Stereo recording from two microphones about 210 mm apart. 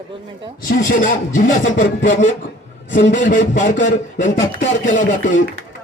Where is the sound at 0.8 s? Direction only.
40° left (ahead or behind).